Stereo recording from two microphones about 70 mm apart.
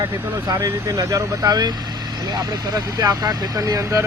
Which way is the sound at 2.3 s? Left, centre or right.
Right.